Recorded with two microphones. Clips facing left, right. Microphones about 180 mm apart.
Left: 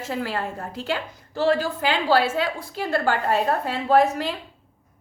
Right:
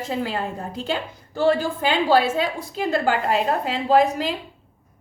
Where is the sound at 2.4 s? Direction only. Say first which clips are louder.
Right 1 dB; 45° right (ahead or behind).